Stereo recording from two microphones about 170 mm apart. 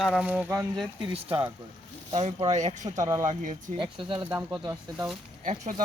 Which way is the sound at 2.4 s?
40° right (ahead or behind).